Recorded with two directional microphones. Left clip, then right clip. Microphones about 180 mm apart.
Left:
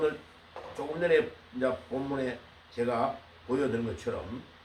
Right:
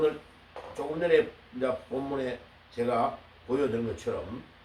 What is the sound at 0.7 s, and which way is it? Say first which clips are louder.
Speech: right 1 dB; 10° left (ahead or behind).